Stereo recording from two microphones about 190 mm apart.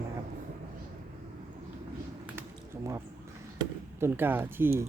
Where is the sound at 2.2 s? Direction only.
10° right (ahead or behind).